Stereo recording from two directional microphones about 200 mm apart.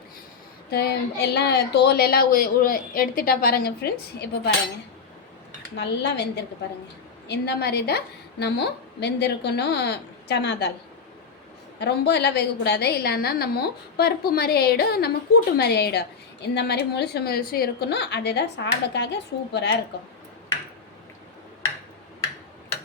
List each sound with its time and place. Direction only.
0.7 s a woman's voice: 55° left (ahead or behind)
5.7 s a woman's voice: 60° left (ahead or behind)
11.8 s a woman's voice: 55° left (ahead or behind)